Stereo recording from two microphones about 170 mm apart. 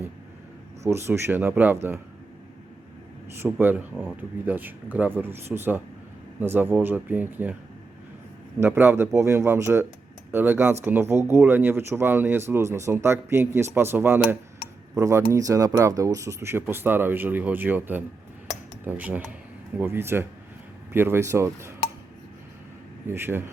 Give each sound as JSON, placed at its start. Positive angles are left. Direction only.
{"t": 0.9, "sound": "speech", "side_deg": -15}
{"t": 3.4, "sound": "speech", "side_deg": -10}
{"t": 8.6, "sound": "speech", "side_deg": -15}
{"t": 23.0, "sound": "speech", "side_deg": -15}